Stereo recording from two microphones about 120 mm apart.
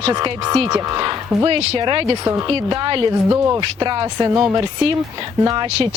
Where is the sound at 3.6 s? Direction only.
40° right (ahead or behind).